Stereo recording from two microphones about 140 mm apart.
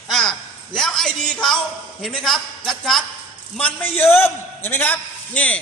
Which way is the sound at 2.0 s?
Centre (ahead or behind).